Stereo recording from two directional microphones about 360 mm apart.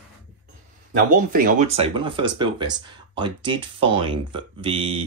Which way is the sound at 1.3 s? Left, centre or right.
Right.